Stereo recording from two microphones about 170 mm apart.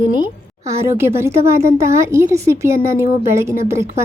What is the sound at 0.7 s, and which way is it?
A woman's voice, 15° right (ahead or behind).